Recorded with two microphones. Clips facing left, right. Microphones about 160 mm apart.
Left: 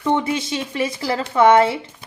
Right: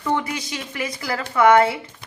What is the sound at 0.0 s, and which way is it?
Speech, 25° left (ahead or behind).